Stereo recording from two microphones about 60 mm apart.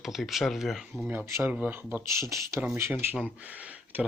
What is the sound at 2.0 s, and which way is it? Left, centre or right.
Speech, right.